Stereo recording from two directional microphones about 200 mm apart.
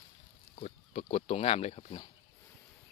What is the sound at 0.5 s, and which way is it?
Pig, 35° left (ahead or behind).